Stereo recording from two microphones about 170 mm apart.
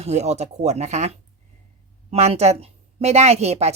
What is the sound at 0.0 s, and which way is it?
A woman's voice, 40° right (ahead or behind).